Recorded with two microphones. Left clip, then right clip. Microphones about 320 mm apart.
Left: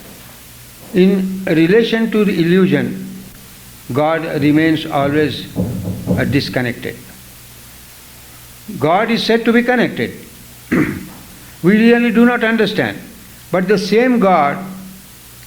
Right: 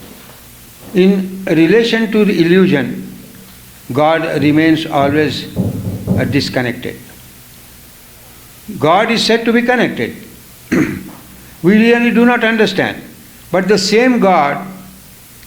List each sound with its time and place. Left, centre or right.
0.9 s a man's voice: left
3.9 s a man's voice: left
8.8 s a man's voice: left
10.7 s a sound: left
11.6 s a man's voice: left